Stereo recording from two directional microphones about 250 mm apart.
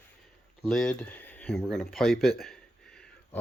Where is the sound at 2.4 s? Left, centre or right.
Centre.